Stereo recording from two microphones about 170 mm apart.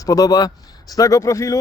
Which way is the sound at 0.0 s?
20° left (ahead or behind).